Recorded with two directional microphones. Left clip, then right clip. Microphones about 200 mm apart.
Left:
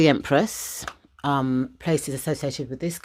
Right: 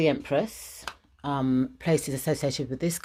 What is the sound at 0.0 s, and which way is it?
Speech, 45° left (ahead or behind).